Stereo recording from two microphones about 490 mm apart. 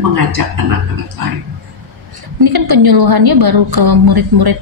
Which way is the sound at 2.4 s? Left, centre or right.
Right.